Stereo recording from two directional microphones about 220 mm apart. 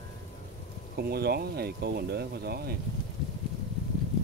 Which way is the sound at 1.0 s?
45° right (ahead or behind).